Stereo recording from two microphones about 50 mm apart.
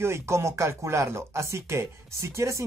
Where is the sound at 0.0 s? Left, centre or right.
Right.